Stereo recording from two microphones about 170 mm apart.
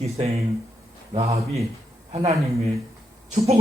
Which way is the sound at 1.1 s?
35° right (ahead or behind).